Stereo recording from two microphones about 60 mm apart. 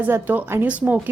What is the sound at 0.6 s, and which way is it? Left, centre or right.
Speech, right.